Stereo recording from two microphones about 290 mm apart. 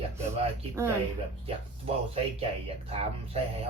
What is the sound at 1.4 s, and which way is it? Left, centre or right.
Speech, centre.